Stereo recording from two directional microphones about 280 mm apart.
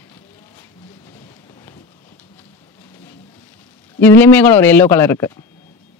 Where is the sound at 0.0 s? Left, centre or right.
Centre.